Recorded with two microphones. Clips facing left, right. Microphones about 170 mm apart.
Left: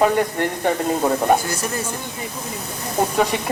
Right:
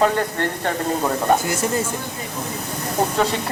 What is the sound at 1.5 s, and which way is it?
Speech, 20° right (ahead or behind).